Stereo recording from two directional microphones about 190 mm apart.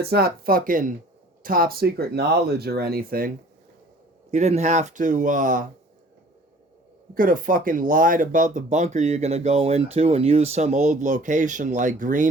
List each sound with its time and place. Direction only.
0.0 s speech: 55° right (ahead or behind)
4.3 s speech: 35° right (ahead or behind)
7.1 s speech: 45° right (ahead or behind)